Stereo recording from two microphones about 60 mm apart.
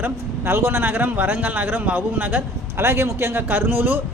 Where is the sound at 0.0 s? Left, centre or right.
Right.